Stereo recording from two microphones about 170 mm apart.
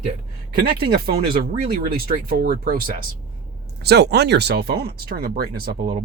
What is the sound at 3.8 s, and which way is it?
Speech, 75° right (ahead or behind).